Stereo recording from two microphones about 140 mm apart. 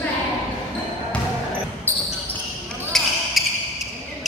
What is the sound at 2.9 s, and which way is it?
Basketball bounce, 5° left (ahead or behind).